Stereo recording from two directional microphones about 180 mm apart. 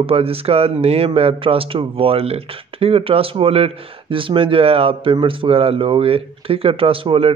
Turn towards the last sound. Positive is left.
turn(degrees=-30)  # may be behind; listen again after turning